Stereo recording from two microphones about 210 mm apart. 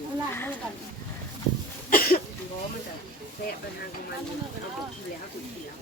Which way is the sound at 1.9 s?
45° left (ahead or behind).